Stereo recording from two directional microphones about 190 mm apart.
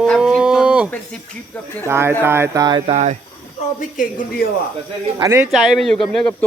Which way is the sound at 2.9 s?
35° right (ahead or behind).